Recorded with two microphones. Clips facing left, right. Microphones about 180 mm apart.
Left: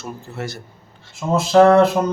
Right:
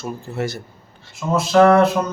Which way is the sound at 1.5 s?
25° left (ahead or behind).